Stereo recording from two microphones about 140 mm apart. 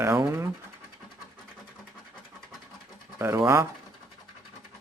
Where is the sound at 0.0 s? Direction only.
20° right (ahead or behind).